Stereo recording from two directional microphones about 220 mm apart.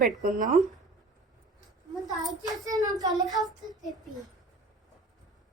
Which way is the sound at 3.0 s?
15° right (ahead or behind).